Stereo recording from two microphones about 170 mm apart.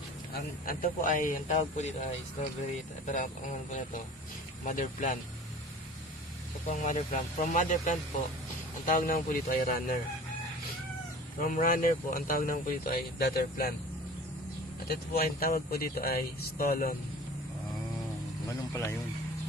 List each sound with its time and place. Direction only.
0.3 s speech: 55° left (ahead or behind)
3.1 s speech: 50° left (ahead or behind)
6.7 s speech: 45° left (ahead or behind)
11.4 s speech: 55° left (ahead or behind)
14.9 s speech: 60° left (ahead or behind)
18.5 s speech: 15° left (ahead or behind)